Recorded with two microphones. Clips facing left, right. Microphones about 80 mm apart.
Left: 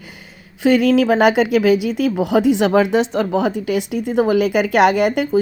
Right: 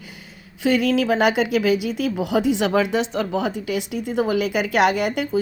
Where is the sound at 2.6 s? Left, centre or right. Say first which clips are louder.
Left 5 dB; left.